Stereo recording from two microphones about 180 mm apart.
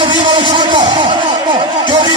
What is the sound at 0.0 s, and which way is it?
Music, 25° right (ahead or behind).